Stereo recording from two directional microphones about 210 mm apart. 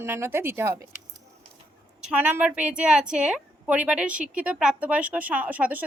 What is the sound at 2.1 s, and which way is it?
A woman's voice, 10° right (ahead or behind).